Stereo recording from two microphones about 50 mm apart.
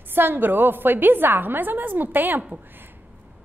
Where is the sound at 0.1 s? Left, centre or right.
Right.